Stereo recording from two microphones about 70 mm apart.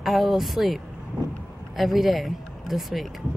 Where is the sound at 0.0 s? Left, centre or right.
Centre.